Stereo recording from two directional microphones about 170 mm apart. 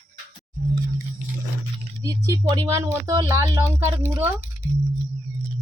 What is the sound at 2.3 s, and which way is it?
Speech, 25° right (ahead or behind).